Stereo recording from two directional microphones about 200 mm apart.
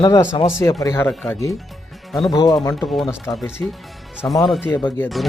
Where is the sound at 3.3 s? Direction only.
Centre (ahead or behind).